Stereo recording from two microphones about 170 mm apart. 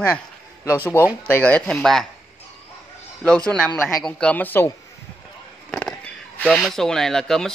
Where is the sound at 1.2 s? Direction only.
10° left (ahead or behind).